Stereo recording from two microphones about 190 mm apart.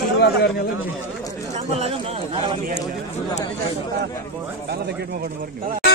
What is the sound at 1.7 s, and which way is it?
Chatter, 30° right (ahead or behind).